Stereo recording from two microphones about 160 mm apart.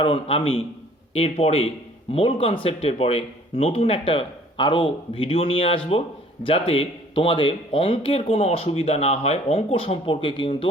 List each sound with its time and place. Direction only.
0.0 s speech: 35° left (ahead or behind)